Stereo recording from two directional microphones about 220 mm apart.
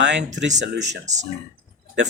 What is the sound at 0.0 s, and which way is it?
Speech, 55° right (ahead or behind).